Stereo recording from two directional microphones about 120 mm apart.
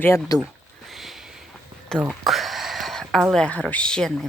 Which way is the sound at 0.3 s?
30° left (ahead or behind).